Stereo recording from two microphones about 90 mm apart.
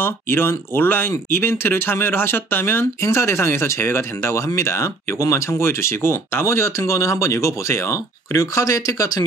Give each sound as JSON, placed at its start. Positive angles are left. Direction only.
{"t": 0.0, "sound": "speech", "side_deg": 25}